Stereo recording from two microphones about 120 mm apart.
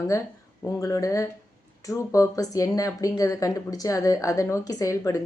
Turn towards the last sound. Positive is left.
turn(degrees=25)  # may be behind; listen again after turning